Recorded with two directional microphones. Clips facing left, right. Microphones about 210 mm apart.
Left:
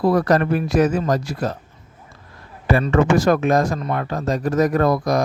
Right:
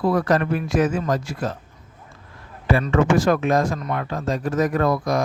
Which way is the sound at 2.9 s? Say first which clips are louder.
Left 2 dB; 40° left (ahead or behind).